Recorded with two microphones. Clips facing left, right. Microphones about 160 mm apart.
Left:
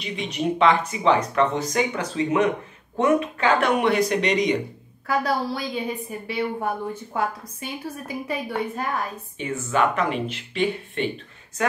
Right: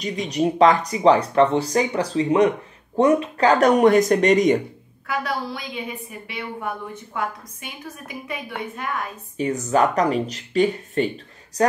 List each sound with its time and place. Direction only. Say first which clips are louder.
0.0 s speech: right 4 dB; 40° right (ahead or behind)
5.0 s a woman's voice: left 3 dB; 35° left (ahead or behind)
9.4 s speech: right 4 dB; 40° right (ahead or behind)